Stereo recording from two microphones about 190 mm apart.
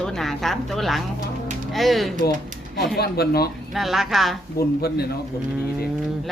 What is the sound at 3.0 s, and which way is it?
Speech, 55° left (ahead or behind).